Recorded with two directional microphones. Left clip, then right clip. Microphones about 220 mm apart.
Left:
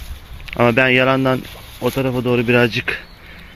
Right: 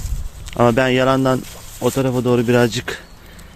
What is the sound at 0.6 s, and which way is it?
Speech, 10° right (ahead or behind).